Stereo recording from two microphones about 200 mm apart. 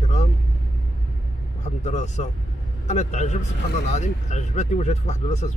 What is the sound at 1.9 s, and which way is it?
Speech, 35° left (ahead or behind).